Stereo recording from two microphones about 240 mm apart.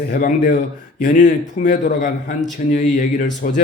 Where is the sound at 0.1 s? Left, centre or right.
Left.